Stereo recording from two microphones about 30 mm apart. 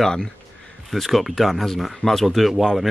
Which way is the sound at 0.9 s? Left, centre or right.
Centre.